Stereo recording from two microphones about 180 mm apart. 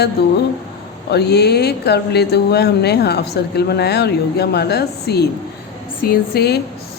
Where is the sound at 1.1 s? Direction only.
65° left (ahead or behind).